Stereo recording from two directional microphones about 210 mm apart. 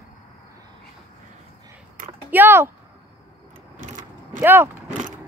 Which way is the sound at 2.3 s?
10° right (ahead or behind).